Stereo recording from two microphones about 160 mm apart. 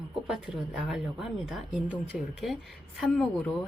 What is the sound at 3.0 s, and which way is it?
Speech, centre (ahead or behind).